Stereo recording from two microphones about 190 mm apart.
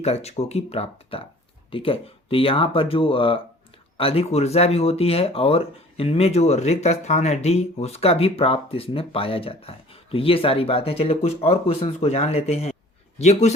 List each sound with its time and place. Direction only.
0.0 s speech: 35° left (ahead or behind)